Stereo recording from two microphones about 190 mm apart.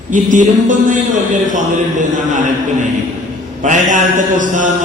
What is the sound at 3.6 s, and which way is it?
A man's voice, 40° right (ahead or behind).